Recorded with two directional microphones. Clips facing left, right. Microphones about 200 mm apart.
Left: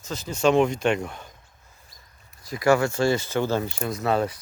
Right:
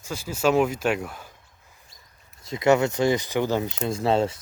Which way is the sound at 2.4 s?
20° right (ahead or behind).